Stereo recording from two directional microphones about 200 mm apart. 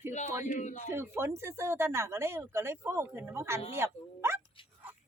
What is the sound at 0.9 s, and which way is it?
Speech, 10° right (ahead or behind).